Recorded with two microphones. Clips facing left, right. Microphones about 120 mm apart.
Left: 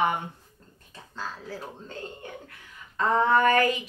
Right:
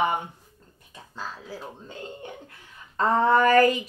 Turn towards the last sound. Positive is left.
turn(degrees=-40)  # may be behind; listen again after turning